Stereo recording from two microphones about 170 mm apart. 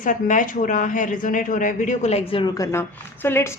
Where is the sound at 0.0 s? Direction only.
50° left (ahead or behind).